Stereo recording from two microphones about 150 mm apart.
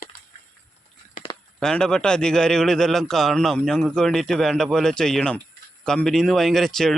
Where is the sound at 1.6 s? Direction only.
5° left (ahead or behind).